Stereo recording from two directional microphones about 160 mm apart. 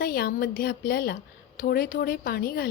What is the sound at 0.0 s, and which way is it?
A woman's voice, 65° left (ahead or behind).